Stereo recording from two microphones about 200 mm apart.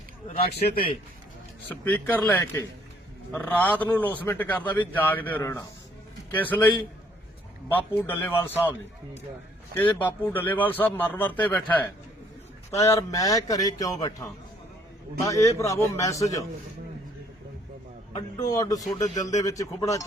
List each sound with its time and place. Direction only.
0.4 s a man's voice: 50° left (ahead or behind)
1.7 s a man's voice: 10° left (ahead or behind)
9.7 s a man's voice: 10° left (ahead or behind)
18.3 s a man's voice: 20° left (ahead or behind)
19.1 s speech: 35° left (ahead or behind)
19.5 s a man's voice: 15° left (ahead or behind)